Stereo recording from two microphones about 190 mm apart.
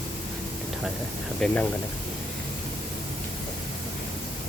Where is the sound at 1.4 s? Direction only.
5° left (ahead or behind).